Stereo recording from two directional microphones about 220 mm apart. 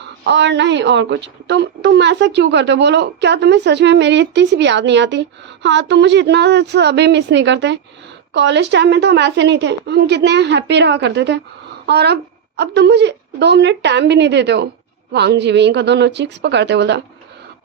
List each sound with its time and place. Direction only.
0.3 s a woman's voice: 50° right (ahead or behind)